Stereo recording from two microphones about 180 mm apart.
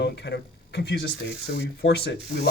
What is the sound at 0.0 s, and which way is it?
Speech, 70° left (ahead or behind).